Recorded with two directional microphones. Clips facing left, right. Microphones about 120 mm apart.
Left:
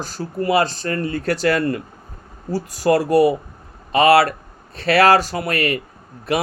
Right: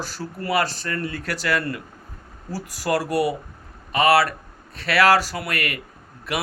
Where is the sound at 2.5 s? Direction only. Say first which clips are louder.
Left 7 dB; 25° left (ahead or behind).